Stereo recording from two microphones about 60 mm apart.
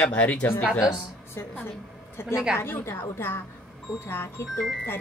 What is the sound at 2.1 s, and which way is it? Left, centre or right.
A woman's voice, left.